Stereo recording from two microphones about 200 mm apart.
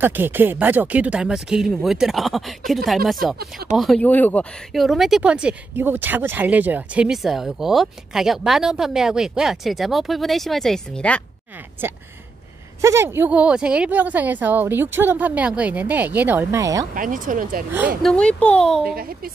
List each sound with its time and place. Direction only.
0.0 s speech: 10° right (ahead or behind)
3.3 s speech: 45° right (ahead or behind)
3.7 s speech: centre (ahead or behind)
12.8 s a woman's voice: 15° right (ahead or behind)
16.9 s speech: 40° right (ahead or behind)
17.7 s a woman's voice: 10° right (ahead or behind)
18.1 s speech: 5° left (ahead or behind)
18.9 s speech: 50° right (ahead or behind)